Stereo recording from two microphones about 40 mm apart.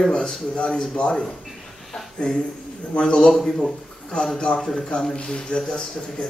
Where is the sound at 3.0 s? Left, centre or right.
Centre.